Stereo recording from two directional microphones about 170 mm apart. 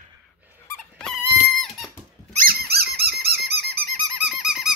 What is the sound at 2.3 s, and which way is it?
Squeak, 55° right (ahead or behind).